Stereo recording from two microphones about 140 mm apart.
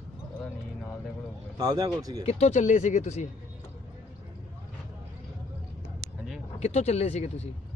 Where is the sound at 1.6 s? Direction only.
25° right (ahead or behind).